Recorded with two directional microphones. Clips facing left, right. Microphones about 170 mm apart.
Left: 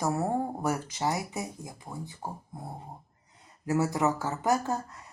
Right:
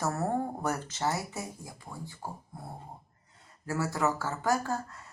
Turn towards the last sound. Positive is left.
turn(degrees=20)  # may be behind; listen again after turning